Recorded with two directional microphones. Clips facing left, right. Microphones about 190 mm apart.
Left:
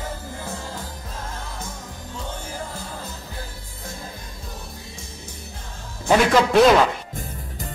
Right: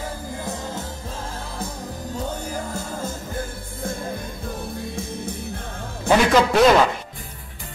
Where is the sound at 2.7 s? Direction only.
45° right (ahead or behind).